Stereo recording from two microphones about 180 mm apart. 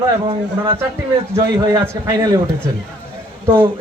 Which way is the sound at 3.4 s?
10° right (ahead or behind).